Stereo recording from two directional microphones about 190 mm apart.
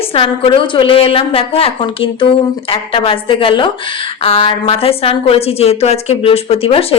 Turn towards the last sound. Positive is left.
turn(degrees=30)  # may be behind; listen again after turning